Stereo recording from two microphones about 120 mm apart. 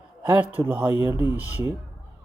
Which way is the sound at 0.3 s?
20° right (ahead or behind).